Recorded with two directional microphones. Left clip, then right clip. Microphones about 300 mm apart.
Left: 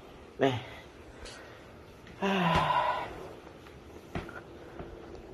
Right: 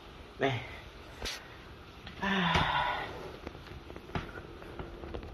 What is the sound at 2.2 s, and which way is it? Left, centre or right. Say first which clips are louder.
Speech: left 2 dB; left.